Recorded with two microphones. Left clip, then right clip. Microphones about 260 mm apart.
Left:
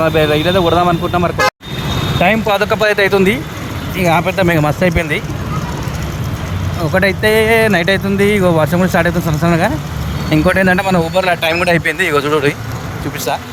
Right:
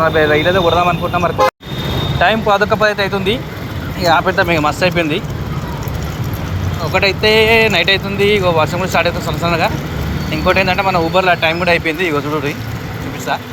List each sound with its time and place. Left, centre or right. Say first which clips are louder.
0.0 s speech: right 1 dB; left
2.5 s speech: even; left
6.9 s speech: even; left
11.9 s a man's voice: left 2 dB; left
12.1 s speech: left 5 dB; left